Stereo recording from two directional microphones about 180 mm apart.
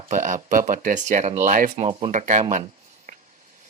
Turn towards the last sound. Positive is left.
turn(degrees=-45)  # may be behind; listen again after turning